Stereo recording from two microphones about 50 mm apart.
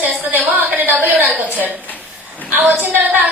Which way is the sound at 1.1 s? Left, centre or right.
Right.